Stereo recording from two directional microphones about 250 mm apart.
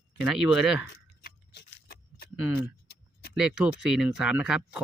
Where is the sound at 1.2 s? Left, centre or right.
Left.